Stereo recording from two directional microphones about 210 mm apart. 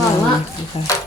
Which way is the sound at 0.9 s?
15° left (ahead or behind).